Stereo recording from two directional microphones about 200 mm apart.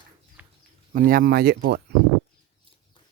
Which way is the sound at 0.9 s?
45° right (ahead or behind).